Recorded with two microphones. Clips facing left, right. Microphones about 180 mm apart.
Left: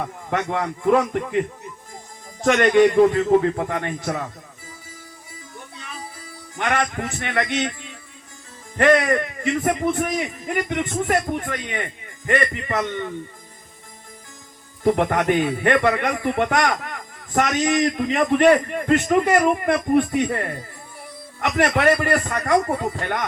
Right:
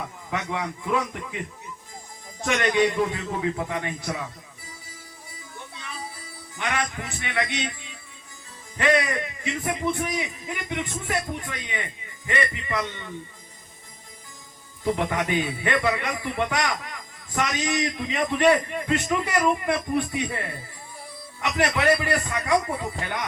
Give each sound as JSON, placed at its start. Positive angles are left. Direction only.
{"t": 0.3, "sound": "a man's voice", "side_deg": 50}
{"t": 2.4, "sound": "a man's voice", "side_deg": 50}
{"t": 6.6, "sound": "a man's voice", "side_deg": 50}
{"t": 14.8, "sound": "a man's voice", "side_deg": 55}